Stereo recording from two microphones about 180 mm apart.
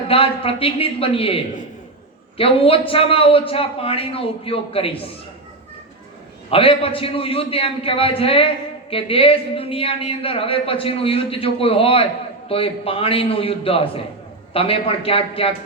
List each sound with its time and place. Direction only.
0.1 s speech: 30° left (ahead or behind)
2.4 s speech: 30° left (ahead or behind)
6.5 s speech: 30° left (ahead or behind)